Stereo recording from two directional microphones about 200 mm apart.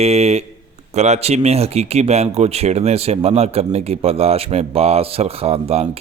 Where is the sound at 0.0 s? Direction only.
30° right (ahead or behind).